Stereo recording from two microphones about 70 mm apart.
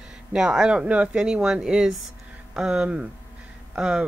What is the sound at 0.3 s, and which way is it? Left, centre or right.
A woman's voice, centre.